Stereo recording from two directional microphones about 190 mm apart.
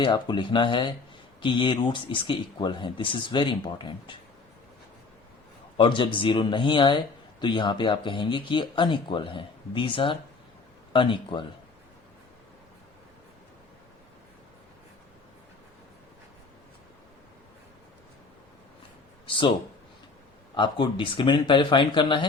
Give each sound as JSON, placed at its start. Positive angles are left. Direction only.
{"t": 0.0, "sound": "speech", "side_deg": 25}
{"t": 5.7, "sound": "a man's voice", "side_deg": 25}
{"t": 19.2, "sound": "speech", "side_deg": 25}
{"t": 20.6, "sound": "speech", "side_deg": 25}